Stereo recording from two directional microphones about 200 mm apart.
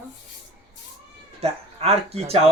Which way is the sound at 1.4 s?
30° right (ahead or behind).